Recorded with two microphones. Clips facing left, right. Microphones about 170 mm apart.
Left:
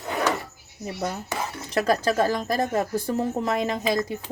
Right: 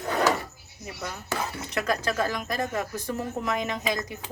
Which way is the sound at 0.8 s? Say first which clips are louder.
Left 7 dB; 35° left (ahead or behind).